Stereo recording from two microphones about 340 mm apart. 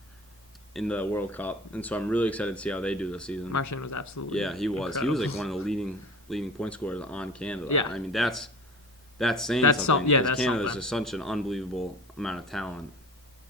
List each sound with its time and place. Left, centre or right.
0.7 s speech: centre
3.5 s speech: left
4.3 s speech: centre
9.6 s speech: left
10.3 s speech: centre